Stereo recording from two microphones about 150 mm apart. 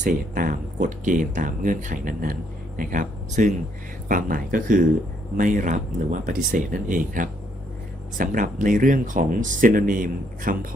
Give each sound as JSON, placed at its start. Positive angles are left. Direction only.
{"t": 0.0, "sound": "speech", "side_deg": -65}